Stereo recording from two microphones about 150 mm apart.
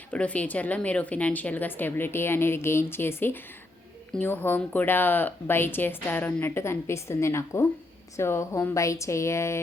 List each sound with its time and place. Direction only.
0.1 s a woman's voice: 10° left (ahead or behind)